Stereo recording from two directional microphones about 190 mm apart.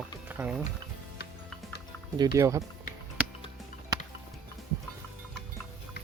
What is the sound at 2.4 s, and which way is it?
Speech, 15° right (ahead or behind).